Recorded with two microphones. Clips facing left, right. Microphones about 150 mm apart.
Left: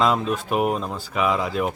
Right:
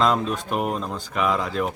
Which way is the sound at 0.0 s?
5° left (ahead or behind).